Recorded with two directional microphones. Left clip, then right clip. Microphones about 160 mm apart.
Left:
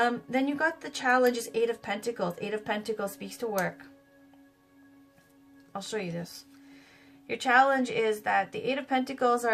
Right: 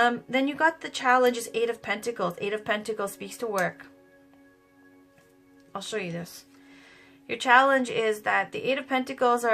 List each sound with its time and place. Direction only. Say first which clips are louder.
0.0 s a woman's voice: right 4 dB; 30° right (ahead or behind)
5.7 s a woman's voice: right 2 dB; 30° right (ahead or behind)
7.3 s a woman's voice: right 3 dB; 30° right (ahead or behind)